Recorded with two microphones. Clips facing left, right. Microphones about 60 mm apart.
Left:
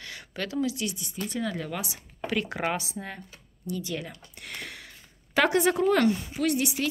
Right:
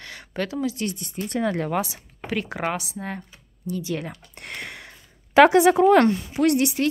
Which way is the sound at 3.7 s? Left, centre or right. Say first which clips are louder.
Right 4 dB; right.